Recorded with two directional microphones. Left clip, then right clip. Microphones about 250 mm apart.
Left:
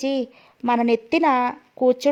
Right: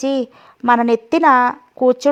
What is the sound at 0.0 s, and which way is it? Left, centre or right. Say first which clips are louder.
A woman's voice: right 5 dB; centre.